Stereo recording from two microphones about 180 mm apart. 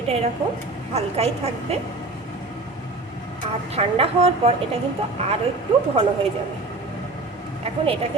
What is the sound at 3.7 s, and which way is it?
A woman's voice, 35° right (ahead or behind).